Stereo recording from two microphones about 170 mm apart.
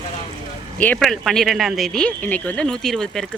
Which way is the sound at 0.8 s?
5° left (ahead or behind).